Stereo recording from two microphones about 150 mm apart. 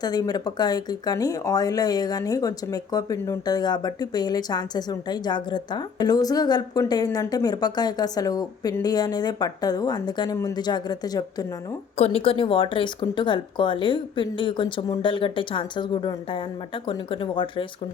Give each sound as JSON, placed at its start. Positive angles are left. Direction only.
{"t": 0.0, "sound": "speech", "side_deg": 25}
{"t": 11.9, "sound": "speech", "side_deg": 40}